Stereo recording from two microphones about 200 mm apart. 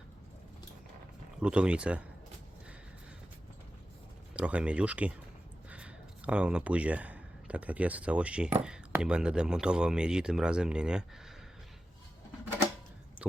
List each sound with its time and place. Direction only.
1.4 s speech: 5° right (ahead or behind)
4.4 s speech: 5° right (ahead or behind)